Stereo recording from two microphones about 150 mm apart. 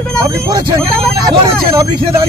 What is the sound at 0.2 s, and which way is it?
Speech, 30° right (ahead or behind).